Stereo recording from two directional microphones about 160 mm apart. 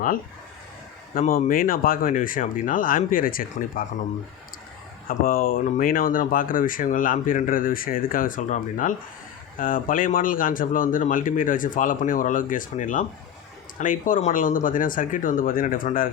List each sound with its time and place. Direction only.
1.3 s speech: 60° left (ahead or behind)
5.0 s speech: 60° left (ahead or behind)